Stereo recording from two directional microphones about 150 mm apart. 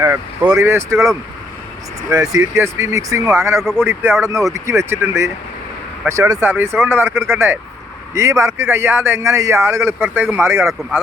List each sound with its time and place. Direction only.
0.0 s speech: 10° right (ahead or behind)
2.0 s a man's voice: 20° right (ahead or behind)
3.6 s speech: 5° left (ahead or behind)
4.2 s a man's voice: 20° right (ahead or behind)